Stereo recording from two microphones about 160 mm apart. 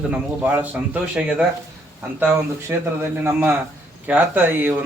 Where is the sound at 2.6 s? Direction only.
15° right (ahead or behind).